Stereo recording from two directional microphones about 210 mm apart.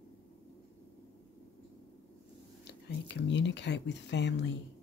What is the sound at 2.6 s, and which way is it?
Speech, 55° left (ahead or behind).